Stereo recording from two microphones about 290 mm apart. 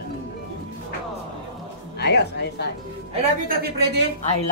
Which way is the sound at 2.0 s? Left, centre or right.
Left.